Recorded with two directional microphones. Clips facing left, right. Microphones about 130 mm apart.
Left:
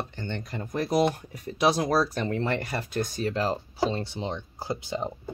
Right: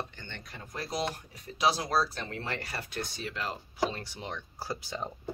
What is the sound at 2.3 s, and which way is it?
Speech, 45° left (ahead or behind).